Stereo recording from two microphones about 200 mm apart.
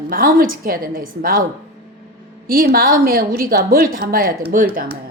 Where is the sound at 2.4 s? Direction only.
45° right (ahead or behind).